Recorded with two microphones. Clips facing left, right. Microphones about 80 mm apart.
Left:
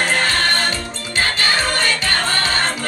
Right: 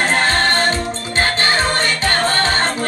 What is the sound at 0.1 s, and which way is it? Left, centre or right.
Music, right.